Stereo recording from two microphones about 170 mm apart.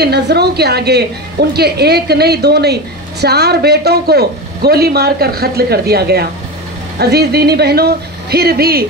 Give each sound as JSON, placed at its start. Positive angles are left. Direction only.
{"t": 0.0, "sound": "a woman's voice", "side_deg": -75}